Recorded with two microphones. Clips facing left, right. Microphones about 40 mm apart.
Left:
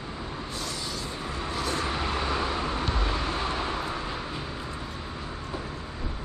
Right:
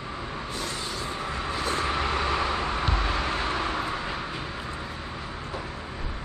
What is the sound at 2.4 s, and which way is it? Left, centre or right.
Vehicle, right.